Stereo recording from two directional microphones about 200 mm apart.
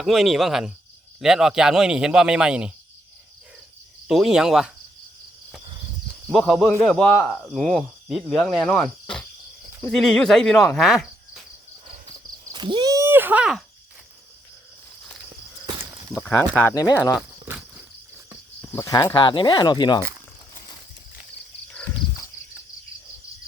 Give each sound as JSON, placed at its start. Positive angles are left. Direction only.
{"t": 0.0, "sound": "speech", "side_deg": 0}
{"t": 4.1, "sound": "speech", "side_deg": 0}
{"t": 6.3, "sound": "speech", "side_deg": 0}
{"t": 12.5, "sound": "a sound", "side_deg": -25}
{"t": 16.1, "sound": "speech", "side_deg": 10}
{"t": 18.7, "sound": "speech", "side_deg": 15}